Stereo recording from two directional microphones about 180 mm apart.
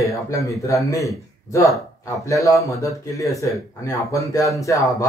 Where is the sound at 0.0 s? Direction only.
20° left (ahead or behind).